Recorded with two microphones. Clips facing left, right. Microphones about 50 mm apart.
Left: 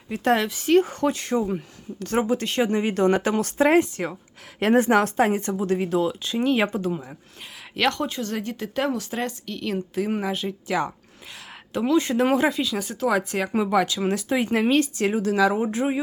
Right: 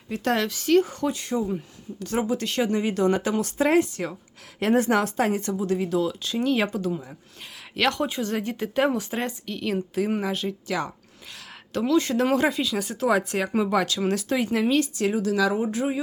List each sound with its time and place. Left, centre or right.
0.1 s speech: centre
0.9 s speech: left
3.7 s speech: left
7.8 s speech: centre
10.7 s speech: centre
12.5 s speech: centre
14.4 s speech: left